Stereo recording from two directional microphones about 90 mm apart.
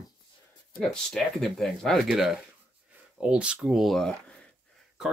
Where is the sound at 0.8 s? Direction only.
5° left (ahead or behind).